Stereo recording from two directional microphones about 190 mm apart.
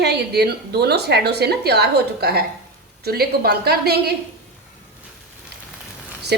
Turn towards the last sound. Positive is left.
turn(degrees=-60)  # may be behind; listen again after turning